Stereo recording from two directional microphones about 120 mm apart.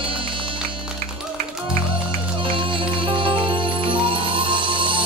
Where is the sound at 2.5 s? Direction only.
45° right (ahead or behind).